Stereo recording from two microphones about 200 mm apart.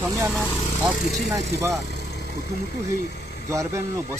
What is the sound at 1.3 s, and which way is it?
Speech, 15° right (ahead or behind).